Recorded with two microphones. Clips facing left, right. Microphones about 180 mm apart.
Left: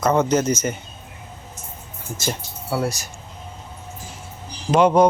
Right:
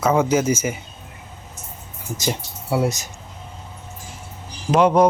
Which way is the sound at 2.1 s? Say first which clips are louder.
Right 2 dB; 20° right (ahead or behind).